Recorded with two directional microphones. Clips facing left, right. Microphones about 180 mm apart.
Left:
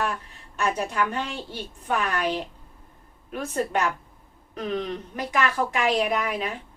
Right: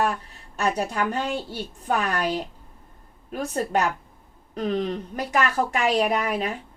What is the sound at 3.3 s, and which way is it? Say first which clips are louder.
A woman's voice: right 2 dB; 40° right (ahead or behind).